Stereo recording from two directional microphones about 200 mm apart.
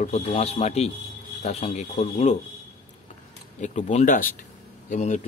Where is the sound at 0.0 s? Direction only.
35° left (ahead or behind).